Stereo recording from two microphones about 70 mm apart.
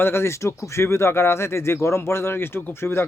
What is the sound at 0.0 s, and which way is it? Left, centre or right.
Speech, left.